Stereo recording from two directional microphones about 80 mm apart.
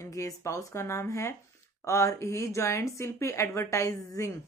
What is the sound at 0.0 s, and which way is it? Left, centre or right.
A woman's voice, left.